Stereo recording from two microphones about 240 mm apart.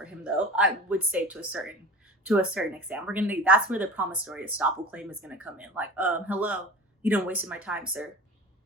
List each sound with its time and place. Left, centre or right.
0.0 s speech: centre